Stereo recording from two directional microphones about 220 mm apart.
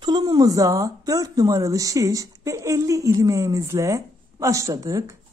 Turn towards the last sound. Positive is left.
turn(degrees=-15)  # may be behind; listen again after turning